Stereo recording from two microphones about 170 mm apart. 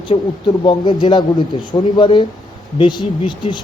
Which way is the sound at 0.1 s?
30° left (ahead or behind).